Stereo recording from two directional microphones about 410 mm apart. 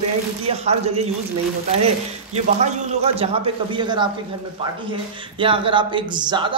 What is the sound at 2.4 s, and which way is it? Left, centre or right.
Speech, centre.